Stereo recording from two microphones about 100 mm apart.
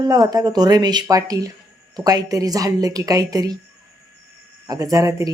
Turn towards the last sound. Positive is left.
turn(degrees=-35)  # may be behind; listen again after turning